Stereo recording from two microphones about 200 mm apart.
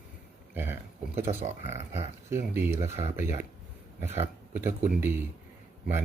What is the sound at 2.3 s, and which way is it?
Speech, 10° right (ahead or behind).